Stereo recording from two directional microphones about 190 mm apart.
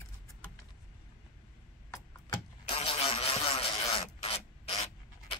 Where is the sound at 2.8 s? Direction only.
30° left (ahead or behind).